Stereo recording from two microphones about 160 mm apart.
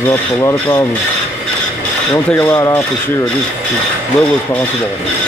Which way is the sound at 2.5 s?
20° left (ahead or behind).